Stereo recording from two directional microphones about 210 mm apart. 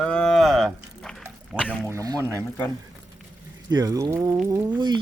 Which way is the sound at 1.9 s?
15° right (ahead or behind).